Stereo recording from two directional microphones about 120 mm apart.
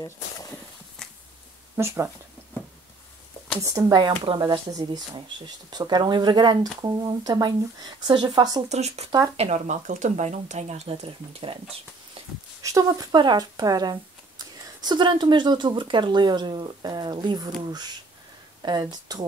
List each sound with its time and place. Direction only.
0.0 s a sound: 25° left (ahead or behind)
1.0 s a sound: 5° left (ahead or behind)
1.8 s speech: 20° right (ahead or behind)
3.6 s speech: 30° right (ahead or behind)
4.4 s speech: 30° right (ahead or behind)
8.6 s speech: 65° right (ahead or behind)
9.4 s speech: 75° right (ahead or behind)
10.9 s speech: 50° right (ahead or behind)
12.6 s speech: 30° right (ahead or behind)